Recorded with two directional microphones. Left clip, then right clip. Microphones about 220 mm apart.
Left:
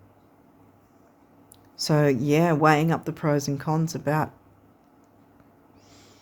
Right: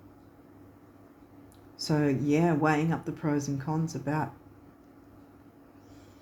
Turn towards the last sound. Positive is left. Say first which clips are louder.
# left 6 dB
turn(degrees=45)  # may be behind; listen again after turning